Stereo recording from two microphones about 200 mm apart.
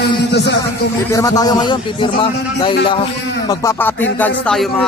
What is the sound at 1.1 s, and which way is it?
A man's voice, 20° left (ahead or behind).